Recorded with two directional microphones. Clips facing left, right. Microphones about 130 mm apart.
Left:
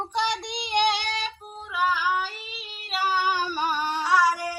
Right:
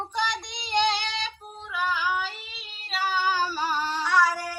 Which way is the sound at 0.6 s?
15° left (ahead or behind).